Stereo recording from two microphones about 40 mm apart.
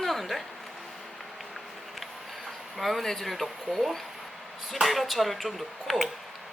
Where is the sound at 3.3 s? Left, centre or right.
Centre.